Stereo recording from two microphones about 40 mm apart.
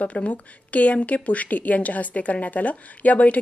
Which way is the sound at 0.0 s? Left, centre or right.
Left.